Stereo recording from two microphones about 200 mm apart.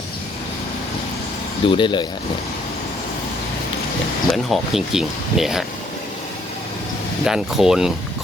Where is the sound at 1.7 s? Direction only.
25° left (ahead or behind).